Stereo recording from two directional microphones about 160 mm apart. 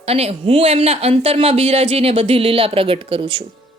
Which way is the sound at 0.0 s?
40° right (ahead or behind).